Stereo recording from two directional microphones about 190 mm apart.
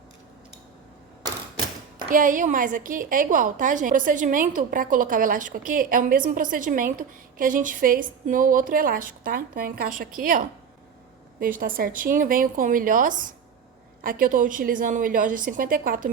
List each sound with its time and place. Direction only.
2.0 s a woman's voice: 45° right (ahead or behind)